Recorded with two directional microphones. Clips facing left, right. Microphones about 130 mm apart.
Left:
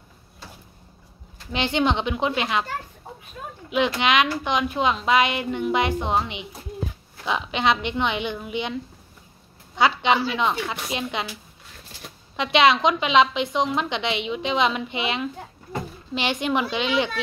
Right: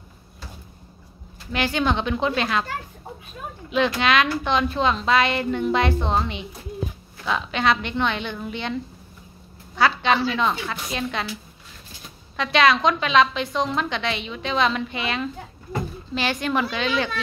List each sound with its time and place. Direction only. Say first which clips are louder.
1.5 s a woman's voice: even; 20° left (ahead or behind)
3.7 s a woman's voice: even; 15° left (ahead or behind)
9.8 s a woman's voice: even; 20° left (ahead or behind)
12.4 s a woman's voice: left 1 dB; 20° left (ahead or behind)